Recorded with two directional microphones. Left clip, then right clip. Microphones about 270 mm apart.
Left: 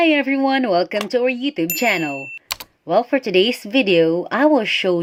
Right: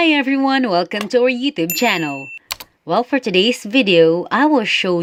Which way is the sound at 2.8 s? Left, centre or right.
Centre.